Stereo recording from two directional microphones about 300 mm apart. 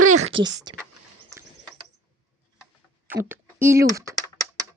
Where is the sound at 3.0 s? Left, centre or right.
Centre.